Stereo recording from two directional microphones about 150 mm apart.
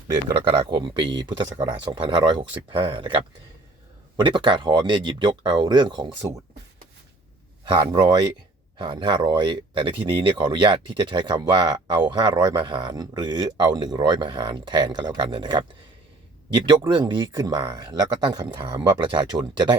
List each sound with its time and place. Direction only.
0.1 s speech: 25° right (ahead or behind)
7.6 s speech: 30° right (ahead or behind)